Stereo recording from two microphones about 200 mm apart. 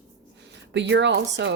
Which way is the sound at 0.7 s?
60° right (ahead or behind).